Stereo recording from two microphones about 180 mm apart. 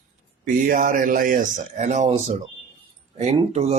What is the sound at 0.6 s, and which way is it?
Speech, 50° right (ahead or behind).